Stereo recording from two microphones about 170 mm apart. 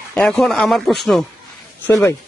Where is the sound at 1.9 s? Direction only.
15° left (ahead or behind).